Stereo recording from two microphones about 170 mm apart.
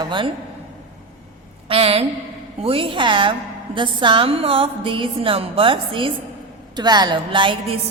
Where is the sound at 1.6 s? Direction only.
35° right (ahead or behind).